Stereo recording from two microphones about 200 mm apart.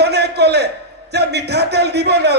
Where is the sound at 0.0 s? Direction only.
55° right (ahead or behind).